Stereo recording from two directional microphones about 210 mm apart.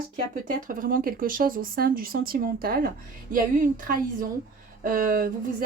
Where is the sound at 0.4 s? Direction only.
40° right (ahead or behind).